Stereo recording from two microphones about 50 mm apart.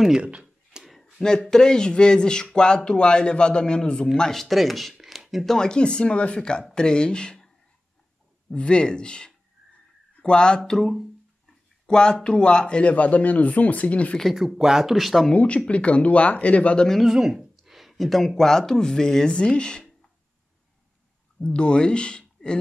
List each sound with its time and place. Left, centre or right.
0.2 s a sound: right
0.8 s a sound: centre
1.2 s speech: centre
4.9 s a sound: centre
5.5 s speech: centre
8.5 s speech: centre
10.8 s speech: centre
11.8 s speech: centre
12.9 s speech: left
14.3 s speech: centre
15.3 s speech: left
17.0 s speech: centre
21.4 s speech: centre